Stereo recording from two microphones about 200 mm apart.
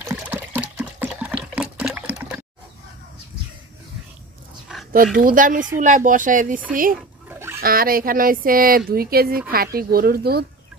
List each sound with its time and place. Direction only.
0.1 s water: 10° right (ahead or behind)
4.9 s speech: 45° right (ahead or behind)
7.0 s a sound: 10° right (ahead or behind)
7.6 s speech: 45° right (ahead or behind)